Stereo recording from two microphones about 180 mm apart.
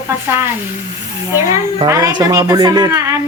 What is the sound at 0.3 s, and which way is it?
A woman's voice, 10° right (ahead or behind).